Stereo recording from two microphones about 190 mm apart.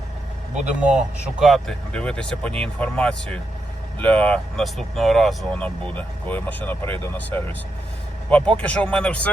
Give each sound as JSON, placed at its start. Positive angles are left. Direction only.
{"t": 0.5, "sound": "speech", "side_deg": -5}